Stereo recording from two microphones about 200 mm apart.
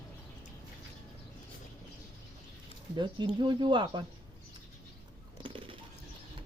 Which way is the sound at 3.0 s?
25° right (ahead or behind).